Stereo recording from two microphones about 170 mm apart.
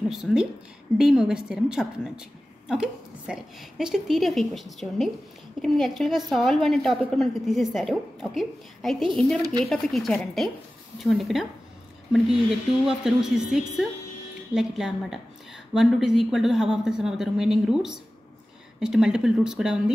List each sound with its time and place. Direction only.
0.1 s a woman's voice: centre (ahead or behind)
9.4 s speech: 25° right (ahead or behind)
9.7 s a woman's voice: centre (ahead or behind)
12.8 s a woman's voice: centre (ahead or behind)